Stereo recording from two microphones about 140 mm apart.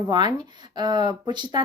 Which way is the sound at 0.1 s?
30° right (ahead or behind).